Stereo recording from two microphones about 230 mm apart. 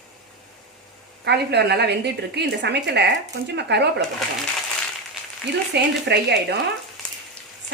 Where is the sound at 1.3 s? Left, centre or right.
Right.